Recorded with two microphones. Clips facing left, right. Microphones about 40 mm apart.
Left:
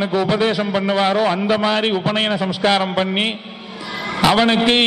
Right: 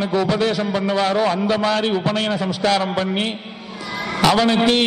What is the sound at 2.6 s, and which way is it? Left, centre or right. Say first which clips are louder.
Speech: left 2 dB; left.